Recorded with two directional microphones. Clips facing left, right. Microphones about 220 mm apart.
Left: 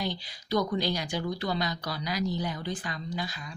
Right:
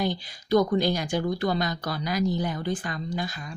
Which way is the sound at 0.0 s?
50° right (ahead or behind).